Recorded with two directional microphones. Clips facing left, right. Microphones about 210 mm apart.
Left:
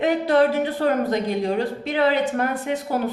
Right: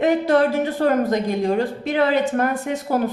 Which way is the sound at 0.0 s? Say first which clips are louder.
Right 1 dB; 45° right (ahead or behind).